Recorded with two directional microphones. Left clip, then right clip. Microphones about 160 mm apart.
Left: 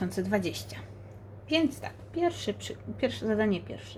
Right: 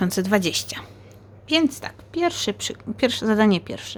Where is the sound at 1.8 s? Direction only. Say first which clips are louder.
Right 6 dB; 50° right (ahead or behind).